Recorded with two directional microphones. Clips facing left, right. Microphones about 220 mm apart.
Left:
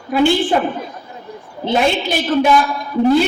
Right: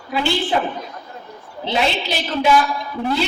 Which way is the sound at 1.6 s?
50° left (ahead or behind).